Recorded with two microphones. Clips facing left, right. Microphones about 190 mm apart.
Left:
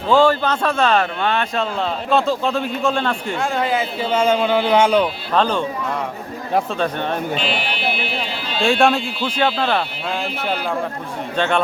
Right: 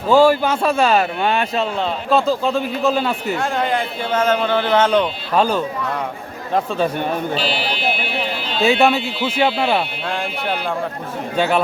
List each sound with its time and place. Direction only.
0.1 s a man's voice: 10° right (ahead or behind); by 5.0 s 10° left (ahead or behind)
5.3 s a man's voice: 10° right (ahead or behind)
6.7 s a man's voice: 5° right (ahead or behind)
7.3 s speech: 35° right (ahead or behind)
8.6 s a man's voice: centre (ahead or behind)
11.3 s a man's voice: 5° right (ahead or behind)